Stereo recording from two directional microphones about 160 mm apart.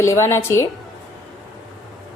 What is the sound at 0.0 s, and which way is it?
Speech, 15° left (ahead or behind).